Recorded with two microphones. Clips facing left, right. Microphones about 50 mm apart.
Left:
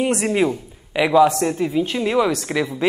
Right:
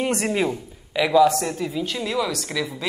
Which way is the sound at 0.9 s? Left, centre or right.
Left.